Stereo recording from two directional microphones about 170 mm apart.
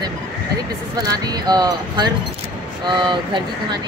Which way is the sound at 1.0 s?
25° right (ahead or behind).